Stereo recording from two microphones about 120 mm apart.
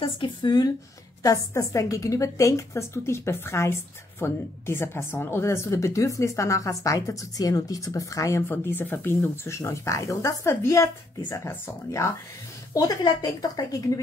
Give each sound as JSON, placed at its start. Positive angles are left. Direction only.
{"t": 0.0, "sound": "a woman's voice", "side_deg": 40}